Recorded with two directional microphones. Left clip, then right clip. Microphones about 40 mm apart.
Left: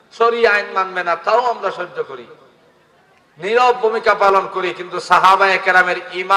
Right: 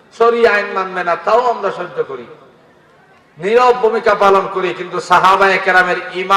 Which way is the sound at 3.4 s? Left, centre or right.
Left.